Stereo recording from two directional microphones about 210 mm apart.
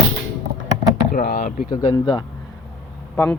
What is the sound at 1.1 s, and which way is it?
Speech, 45° left (ahead or behind).